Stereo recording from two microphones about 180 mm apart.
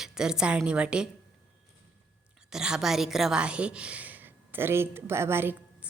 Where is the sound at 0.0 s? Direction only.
5° right (ahead or behind).